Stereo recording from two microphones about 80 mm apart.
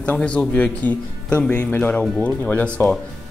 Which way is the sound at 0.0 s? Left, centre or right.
Centre.